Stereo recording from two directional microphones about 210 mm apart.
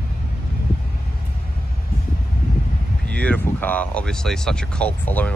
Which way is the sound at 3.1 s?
5° left (ahead or behind).